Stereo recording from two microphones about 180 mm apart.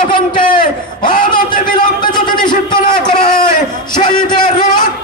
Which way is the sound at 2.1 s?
25° left (ahead or behind).